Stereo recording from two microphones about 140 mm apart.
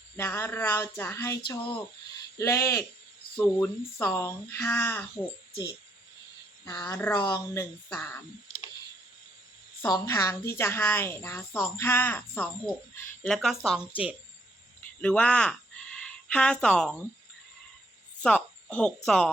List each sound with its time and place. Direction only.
0.2 s a woman's voice: 20° left (ahead or behind)
6.7 s a woman's voice: 20° left (ahead or behind)
9.8 s a woman's voice: 25° left (ahead or behind)
13.2 s speech: 5° left (ahead or behind)
15.0 s speech: 10° left (ahead or behind)
18.2 s a sound: 10° left (ahead or behind)
19.0 s speech: centre (ahead or behind)